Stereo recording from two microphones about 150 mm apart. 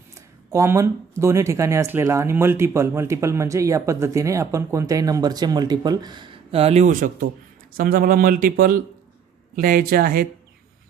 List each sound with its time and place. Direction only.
0.1 s a sound: 20° right (ahead or behind)
1.2 s speech: 20° right (ahead or behind); by 7.3 s 65° right (ahead or behind)
7.8 s speech: 80° right